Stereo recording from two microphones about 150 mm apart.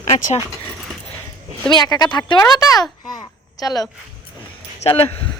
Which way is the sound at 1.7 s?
25° left (ahead or behind).